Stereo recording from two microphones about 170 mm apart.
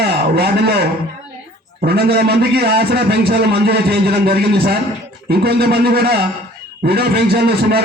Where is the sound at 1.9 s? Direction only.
70° right (ahead or behind).